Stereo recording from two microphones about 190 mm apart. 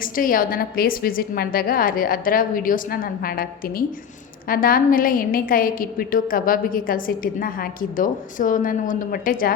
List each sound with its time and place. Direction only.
0.0 s a woman's voice: 45° left (ahead or behind)